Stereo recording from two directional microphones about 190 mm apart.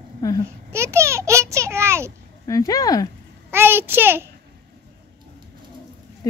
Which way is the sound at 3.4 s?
10° right (ahead or behind).